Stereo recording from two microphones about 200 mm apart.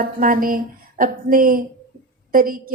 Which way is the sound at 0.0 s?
45° right (ahead or behind).